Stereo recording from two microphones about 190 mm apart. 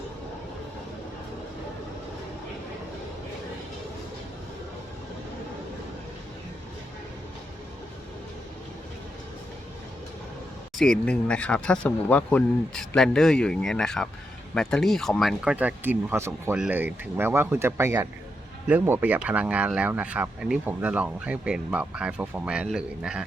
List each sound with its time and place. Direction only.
10.8 s speech: 5° left (ahead or behind)